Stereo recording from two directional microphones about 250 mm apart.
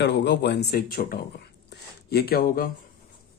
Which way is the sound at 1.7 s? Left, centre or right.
Left.